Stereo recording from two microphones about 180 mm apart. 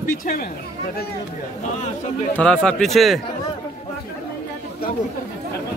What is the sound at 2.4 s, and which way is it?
Speech, 5° left (ahead or behind).